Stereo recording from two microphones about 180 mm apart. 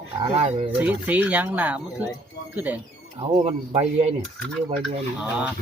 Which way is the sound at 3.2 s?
30° right (ahead or behind).